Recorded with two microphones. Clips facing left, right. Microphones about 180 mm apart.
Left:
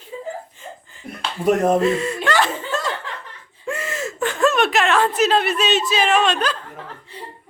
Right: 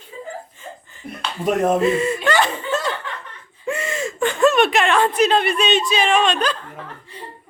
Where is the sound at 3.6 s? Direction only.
Centre (ahead or behind).